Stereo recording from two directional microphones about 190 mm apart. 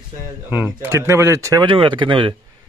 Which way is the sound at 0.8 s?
15° right (ahead or behind).